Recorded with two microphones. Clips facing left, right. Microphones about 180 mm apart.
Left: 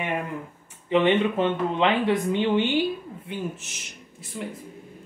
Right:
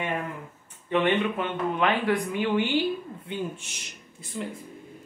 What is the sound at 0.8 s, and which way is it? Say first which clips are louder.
Speech: left 3 dB; 20° left (ahead or behind).